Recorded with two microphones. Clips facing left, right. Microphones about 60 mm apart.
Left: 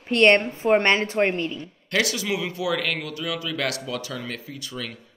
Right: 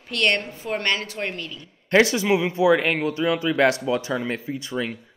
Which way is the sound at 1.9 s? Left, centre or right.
Right.